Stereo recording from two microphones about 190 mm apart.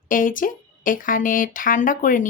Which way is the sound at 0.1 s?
45° left (ahead or behind).